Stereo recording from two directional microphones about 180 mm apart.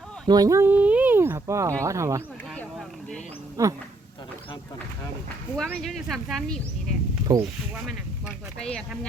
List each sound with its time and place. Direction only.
0.3 s speech: 20° right (ahead or behind)
3.6 s speech: 15° right (ahead or behind)
5.7 s speech: centre (ahead or behind)
7.3 s speech: 20° right (ahead or behind)
8.5 s speech: 5° left (ahead or behind)